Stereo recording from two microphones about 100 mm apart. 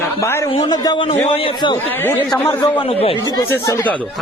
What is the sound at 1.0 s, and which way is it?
Speech, 85° left.